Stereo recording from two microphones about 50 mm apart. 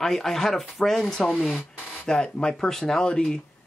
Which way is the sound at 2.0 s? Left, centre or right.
Centre.